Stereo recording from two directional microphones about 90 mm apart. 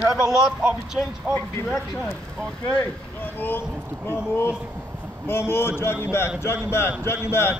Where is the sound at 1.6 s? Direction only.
25° left (ahead or behind).